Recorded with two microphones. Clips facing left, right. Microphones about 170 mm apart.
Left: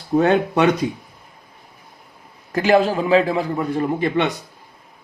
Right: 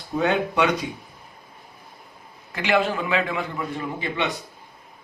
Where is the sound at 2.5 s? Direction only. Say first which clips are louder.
Left 6 dB; 40° left (ahead or behind).